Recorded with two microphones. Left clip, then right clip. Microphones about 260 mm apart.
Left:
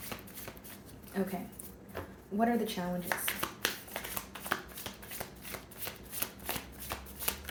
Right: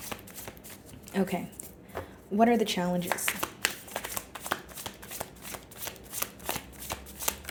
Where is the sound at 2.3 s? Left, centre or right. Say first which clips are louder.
Right 7 dB; right.